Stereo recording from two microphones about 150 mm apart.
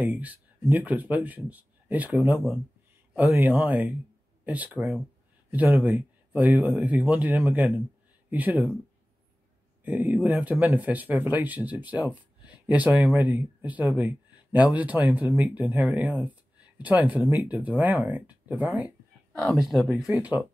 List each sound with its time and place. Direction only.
0.0 s speech: 10° right (ahead or behind)
9.8 s speech: 10° right (ahead or behind)